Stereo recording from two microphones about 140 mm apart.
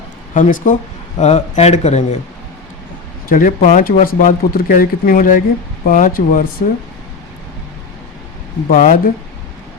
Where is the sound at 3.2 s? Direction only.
80° left.